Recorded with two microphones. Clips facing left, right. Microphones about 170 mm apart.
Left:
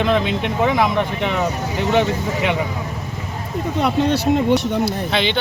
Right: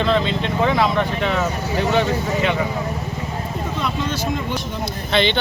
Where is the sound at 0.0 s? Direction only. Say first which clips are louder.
Left 1 dB; 15° left (ahead or behind).